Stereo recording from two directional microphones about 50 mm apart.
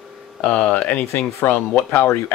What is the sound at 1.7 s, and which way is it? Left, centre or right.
Speech, left.